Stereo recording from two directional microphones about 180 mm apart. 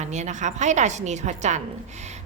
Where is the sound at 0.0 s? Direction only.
40° right (ahead or behind).